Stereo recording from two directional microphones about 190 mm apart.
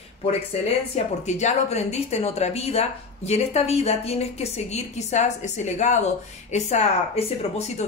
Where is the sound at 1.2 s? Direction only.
35° left (ahead or behind).